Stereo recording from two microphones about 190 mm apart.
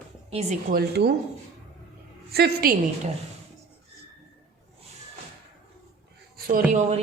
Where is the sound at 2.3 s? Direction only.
55° right (ahead or behind).